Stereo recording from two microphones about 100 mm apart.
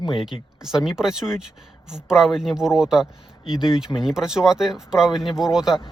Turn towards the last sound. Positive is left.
turn(degrees=-5)  # may be behind; listen again after turning